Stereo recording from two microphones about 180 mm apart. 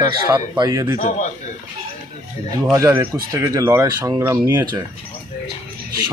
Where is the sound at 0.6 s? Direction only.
20° right (ahead or behind).